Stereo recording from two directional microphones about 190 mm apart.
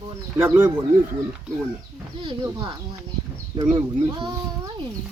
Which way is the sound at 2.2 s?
25° right (ahead or behind).